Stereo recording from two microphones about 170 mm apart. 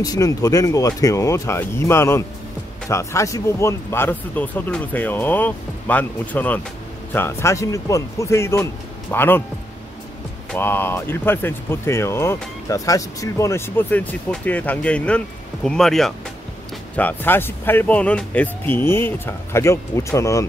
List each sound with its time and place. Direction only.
0.0 s speech: 20° left (ahead or behind)
10.5 s speech: 10° left (ahead or behind)